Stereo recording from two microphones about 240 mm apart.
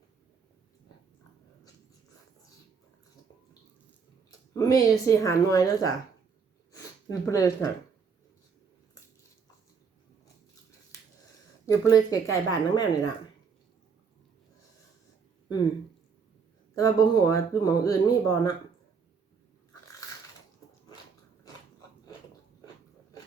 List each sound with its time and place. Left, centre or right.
4.3 s speech: centre
11.6 s speech: centre
16.7 s speech: centre